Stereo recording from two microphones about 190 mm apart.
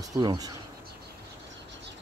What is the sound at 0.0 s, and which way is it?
Speech, 20° right (ahead or behind).